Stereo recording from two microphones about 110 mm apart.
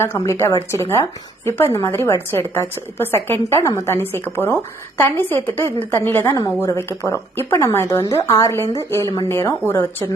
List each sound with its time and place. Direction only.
0.0 s a woman's voice: 25° left (ahead or behind)